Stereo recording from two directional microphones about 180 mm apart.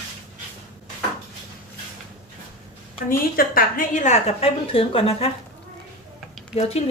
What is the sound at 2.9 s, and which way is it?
A woman's voice, 50° left (ahead or behind).